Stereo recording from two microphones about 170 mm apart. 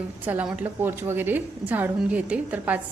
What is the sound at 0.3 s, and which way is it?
A woman's voice, 10° right (ahead or behind).